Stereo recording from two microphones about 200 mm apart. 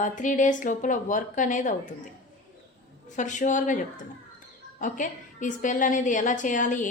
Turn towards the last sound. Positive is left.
turn(degrees=40)  # may be behind; listen again after turning